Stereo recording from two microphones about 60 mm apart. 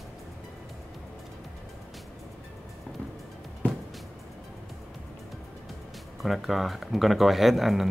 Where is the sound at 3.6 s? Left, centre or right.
Left.